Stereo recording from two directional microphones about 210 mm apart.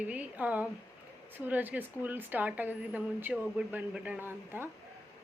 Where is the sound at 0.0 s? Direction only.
5° right (ahead or behind).